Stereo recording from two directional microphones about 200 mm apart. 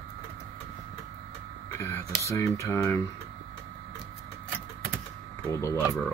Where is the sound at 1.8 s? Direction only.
15° left (ahead or behind).